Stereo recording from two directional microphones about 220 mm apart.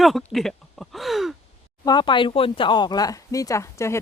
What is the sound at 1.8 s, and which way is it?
Speech, 20° left (ahead or behind).